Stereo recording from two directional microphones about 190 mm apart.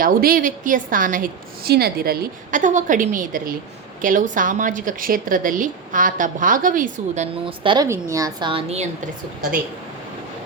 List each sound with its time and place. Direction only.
0.0 s a woman's voice: 50° right (ahead or behind)
7.4 s a woman's voice: 25° right (ahead or behind)
7.9 s a woman's voice: 15° right (ahead or behind); by 8.9 s 30° right (ahead or behind)